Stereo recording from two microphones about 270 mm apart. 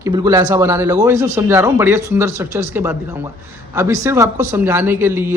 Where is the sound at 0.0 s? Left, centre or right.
Centre.